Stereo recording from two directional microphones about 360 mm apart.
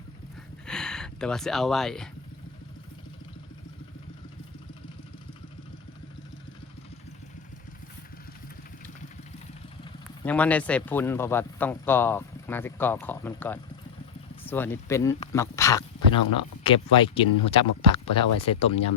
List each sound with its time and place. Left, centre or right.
0.7 s speech: centre
10.2 s speech: centre